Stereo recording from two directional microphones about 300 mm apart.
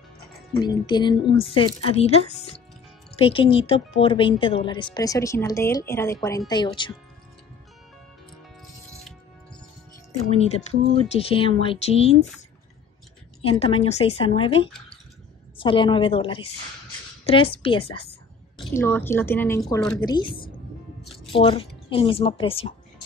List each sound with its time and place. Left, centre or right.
0.6 s speech: centre
10.3 s speech: left
13.4 s speech: centre
20.0 s speech: centre
21.1 s music: centre
21.8 s speech: centre